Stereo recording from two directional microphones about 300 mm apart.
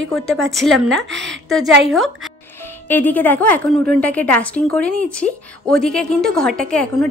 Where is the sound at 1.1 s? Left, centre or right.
Right.